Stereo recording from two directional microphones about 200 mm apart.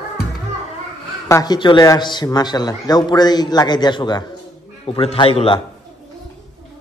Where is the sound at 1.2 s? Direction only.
15° left (ahead or behind).